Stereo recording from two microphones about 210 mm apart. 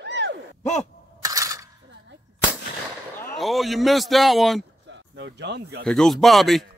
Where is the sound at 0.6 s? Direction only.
35° left (ahead or behind).